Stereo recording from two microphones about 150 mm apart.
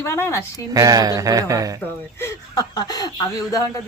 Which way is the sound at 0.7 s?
25° right (ahead or behind).